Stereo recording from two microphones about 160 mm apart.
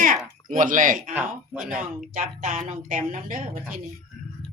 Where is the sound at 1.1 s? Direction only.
5° right (ahead or behind).